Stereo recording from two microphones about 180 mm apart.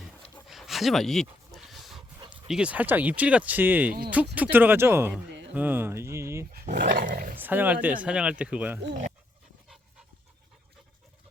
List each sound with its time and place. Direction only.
0.4 s dog: centre (ahead or behind)
2.3 s speech: 5° right (ahead or behind)
6.5 s speech: 45° right (ahead or behind)
7.3 s speech: 10° right (ahead or behind)